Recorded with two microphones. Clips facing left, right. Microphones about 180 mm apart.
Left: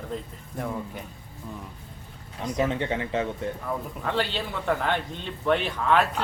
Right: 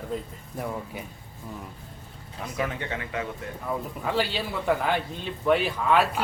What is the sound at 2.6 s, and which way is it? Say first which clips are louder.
Speech: left 5 dB; 25° left (ahead or behind).